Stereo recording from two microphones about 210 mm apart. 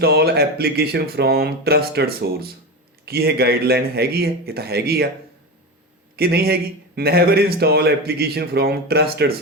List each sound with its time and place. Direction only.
0.0 s a man's voice: 50° right (ahead or behind)
6.1 s a man's voice: 50° right (ahead or behind)